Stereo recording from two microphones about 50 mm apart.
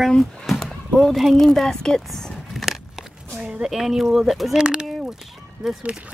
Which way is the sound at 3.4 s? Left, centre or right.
Centre.